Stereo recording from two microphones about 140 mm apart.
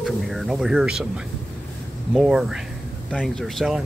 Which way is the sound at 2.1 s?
5° right (ahead or behind).